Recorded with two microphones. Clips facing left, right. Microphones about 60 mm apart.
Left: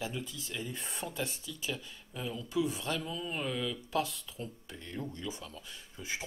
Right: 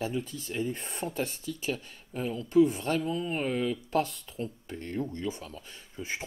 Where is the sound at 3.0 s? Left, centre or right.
Right.